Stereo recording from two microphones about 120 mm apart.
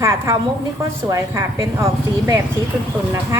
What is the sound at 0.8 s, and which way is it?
Speech, 25° right (ahead or behind).